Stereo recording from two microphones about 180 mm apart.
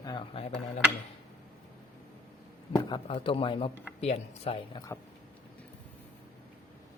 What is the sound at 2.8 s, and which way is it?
A man's voice, 30° left (ahead or behind).